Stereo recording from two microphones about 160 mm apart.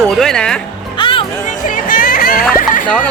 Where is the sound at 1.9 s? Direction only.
60° left (ahead or behind).